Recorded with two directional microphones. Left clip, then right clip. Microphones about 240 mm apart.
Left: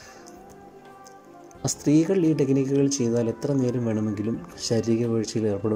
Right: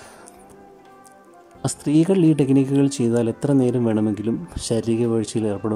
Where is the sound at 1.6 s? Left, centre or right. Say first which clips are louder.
Right 2 dB; centre.